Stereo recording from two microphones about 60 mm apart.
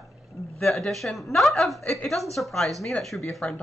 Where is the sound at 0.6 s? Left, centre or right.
Centre.